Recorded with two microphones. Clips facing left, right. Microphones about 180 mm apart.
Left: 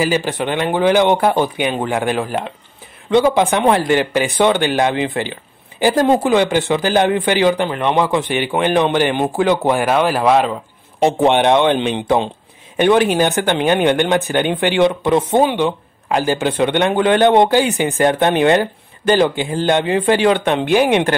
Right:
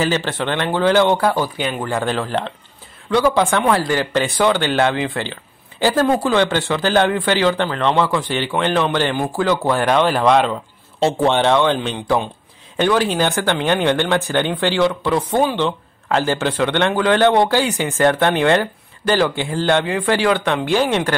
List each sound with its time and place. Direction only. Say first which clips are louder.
0.0 s speech: left 2 dB; 10° left (ahead or behind)
9.8 s speech: right 1 dB; 5° left (ahead or behind)
11.0 s speech: left 3 dB; 15° left (ahead or behind)